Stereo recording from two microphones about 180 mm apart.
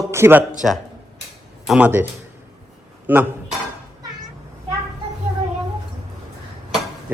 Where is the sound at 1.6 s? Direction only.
5° right (ahead or behind).